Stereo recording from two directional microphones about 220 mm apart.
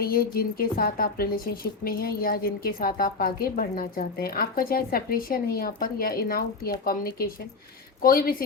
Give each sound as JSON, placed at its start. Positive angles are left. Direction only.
{"t": 0.0, "sound": "a woman's voice", "side_deg": 45}